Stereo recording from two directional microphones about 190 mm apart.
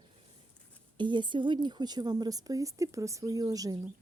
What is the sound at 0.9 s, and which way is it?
Speech, 25° right (ahead or behind).